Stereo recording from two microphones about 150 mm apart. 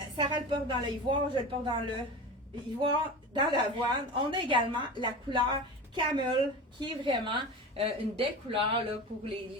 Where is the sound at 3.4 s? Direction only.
30° right (ahead or behind).